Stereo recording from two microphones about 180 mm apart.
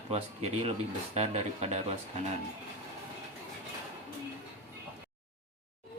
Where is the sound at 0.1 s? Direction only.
35° right (ahead or behind).